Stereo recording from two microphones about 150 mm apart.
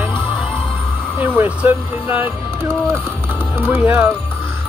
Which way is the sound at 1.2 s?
10° right (ahead or behind).